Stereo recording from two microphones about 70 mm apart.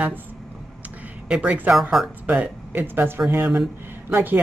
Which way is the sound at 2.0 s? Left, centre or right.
Centre.